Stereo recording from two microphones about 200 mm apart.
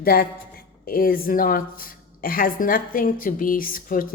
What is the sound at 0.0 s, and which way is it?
A man's voice, 45° left (ahead or behind).